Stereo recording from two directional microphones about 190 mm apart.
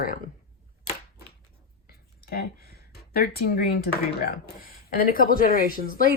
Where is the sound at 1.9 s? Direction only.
55° left (ahead or behind).